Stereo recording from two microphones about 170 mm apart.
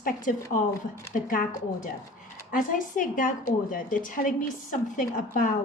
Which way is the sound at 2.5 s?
50° left (ahead or behind).